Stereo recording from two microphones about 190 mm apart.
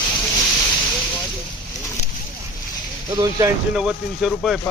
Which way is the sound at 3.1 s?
20° right (ahead or behind).